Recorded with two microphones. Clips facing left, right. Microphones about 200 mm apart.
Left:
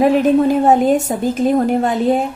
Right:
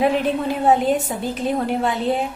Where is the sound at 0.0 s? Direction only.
45° left (ahead or behind).